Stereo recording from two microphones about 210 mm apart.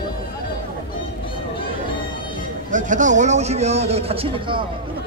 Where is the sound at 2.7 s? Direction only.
35° right (ahead or behind).